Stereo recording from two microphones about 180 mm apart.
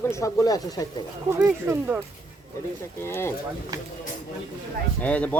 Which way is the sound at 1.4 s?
10° right (ahead or behind).